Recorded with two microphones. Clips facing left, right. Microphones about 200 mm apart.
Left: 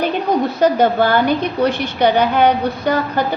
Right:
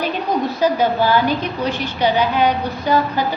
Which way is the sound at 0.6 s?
60° left (ahead or behind).